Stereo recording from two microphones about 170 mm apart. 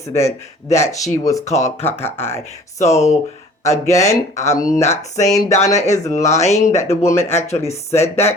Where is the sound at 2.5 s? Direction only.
40° left (ahead or behind).